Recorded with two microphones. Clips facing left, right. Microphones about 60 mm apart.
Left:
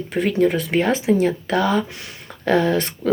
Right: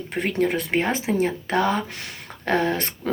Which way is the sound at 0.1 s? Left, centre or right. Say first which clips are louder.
Left 5 dB; right.